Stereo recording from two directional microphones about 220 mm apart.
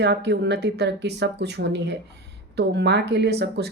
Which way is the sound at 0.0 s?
50° right (ahead or behind).